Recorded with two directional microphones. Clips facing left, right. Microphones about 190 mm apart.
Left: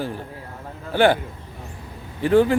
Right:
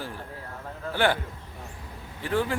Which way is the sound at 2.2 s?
20° left (ahead or behind).